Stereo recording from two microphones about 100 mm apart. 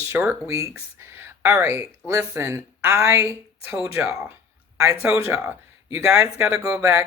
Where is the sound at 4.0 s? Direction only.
5° right (ahead or behind).